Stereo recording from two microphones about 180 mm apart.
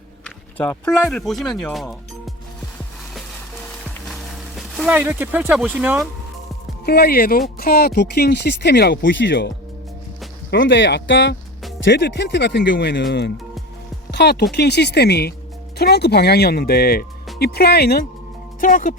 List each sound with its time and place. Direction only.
0.3 s music: 10° left (ahead or behind)
0.9 s speech: centre (ahead or behind)
4.1 s a sound: centre (ahead or behind)
4.9 s speech: 10° right (ahead or behind)
6.8 s speech: 60° left (ahead or behind)
10.5 s speech: 80° left
11.9 s speech: 75° left (ahead or behind)
18.6 s speech: 50° left (ahead or behind)